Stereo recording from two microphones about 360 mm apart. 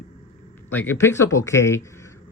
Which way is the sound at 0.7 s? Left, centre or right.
Centre.